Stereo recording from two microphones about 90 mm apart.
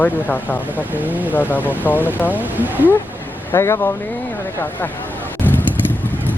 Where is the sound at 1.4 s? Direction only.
20° left (ahead or behind).